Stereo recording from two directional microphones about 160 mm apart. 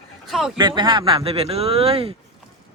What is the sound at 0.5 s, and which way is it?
Speech, 30° right (ahead or behind).